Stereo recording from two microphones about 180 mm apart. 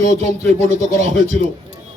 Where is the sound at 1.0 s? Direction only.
40° right (ahead or behind).